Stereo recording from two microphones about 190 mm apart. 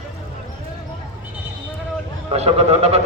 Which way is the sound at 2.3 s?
35° right (ahead or behind).